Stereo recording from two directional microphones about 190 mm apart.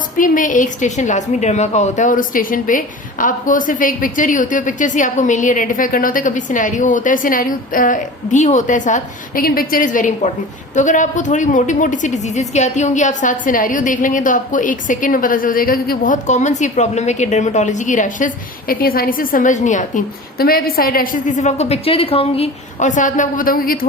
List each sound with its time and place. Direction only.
0.2 s a woman's voice: 45° left (ahead or behind)
20.4 s speech: 50° left (ahead or behind)